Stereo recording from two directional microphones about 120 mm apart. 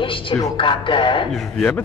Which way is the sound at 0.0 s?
45° left (ahead or behind).